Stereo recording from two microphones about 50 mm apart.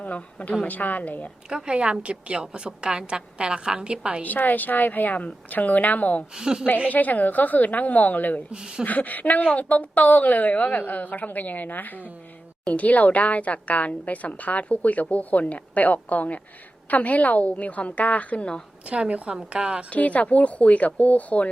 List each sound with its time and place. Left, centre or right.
0.0 s a woman's voice: left
1.5 s a woman's voice: centre
4.2 s a woman's voice: left
6.3 s a woman's voice: centre
6.8 s a woman's voice: left
8.5 s a woman's voice: centre
8.8 s a woman's voice: left
18.9 s a woman's voice: right
19.9 s a woman's voice: left